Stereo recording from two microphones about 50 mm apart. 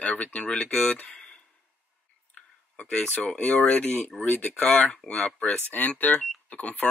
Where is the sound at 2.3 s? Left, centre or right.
Left.